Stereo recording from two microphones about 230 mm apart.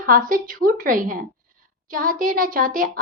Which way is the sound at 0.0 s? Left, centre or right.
Right.